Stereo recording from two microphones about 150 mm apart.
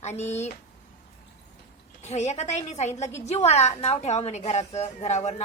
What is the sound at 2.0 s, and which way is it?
Speech, 50° left (ahead or behind).